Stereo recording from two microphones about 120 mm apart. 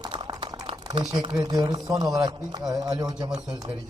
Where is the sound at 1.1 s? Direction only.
35° right (ahead or behind).